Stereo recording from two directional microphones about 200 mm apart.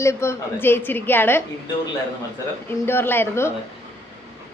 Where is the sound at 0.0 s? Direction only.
15° left (ahead or behind).